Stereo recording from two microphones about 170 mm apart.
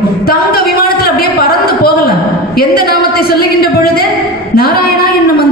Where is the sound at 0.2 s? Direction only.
60° left (ahead or behind).